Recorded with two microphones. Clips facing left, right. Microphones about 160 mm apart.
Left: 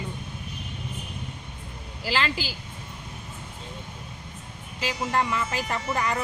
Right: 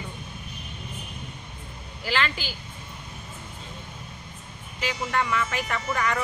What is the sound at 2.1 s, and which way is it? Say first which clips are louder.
Speech: even; 35° left (ahead or behind).